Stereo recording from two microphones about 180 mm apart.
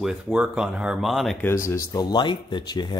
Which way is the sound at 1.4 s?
15° left (ahead or behind).